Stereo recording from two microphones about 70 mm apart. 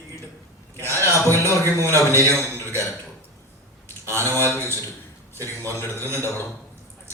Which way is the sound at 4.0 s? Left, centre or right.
Right.